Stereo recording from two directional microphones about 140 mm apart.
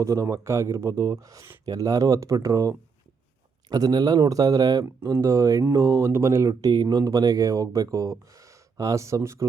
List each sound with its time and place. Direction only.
0.0 s speech: 20° right (ahead or behind)